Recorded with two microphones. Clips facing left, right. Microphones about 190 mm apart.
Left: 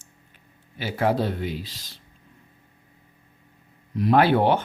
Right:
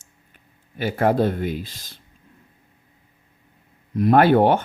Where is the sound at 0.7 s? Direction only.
50° right (ahead or behind).